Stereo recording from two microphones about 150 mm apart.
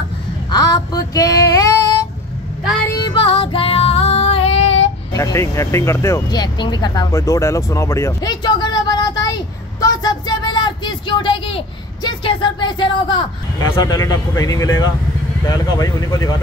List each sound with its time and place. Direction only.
0.5 s a sound: 25° left (ahead or behind)
2.9 s female singing: 25° left (ahead or behind); by 4.8 s 45° left (ahead or behind)
5.1 s speech: 20° left (ahead or behind)